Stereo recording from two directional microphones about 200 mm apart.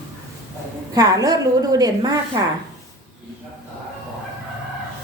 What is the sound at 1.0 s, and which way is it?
A woman's voice, 20° right (ahead or behind).